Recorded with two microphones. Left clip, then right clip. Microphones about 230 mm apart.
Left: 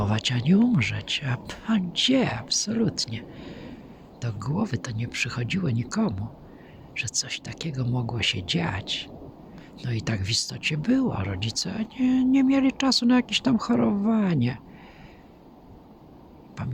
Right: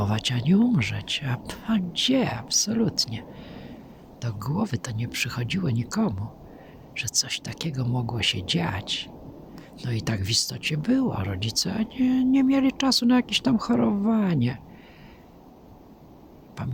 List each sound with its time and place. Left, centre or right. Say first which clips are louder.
0.0 s speech: even; centre
16.6 s speech: right 1 dB; centre